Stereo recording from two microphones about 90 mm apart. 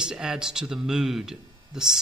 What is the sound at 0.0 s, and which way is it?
Speech, 5° right (ahead or behind).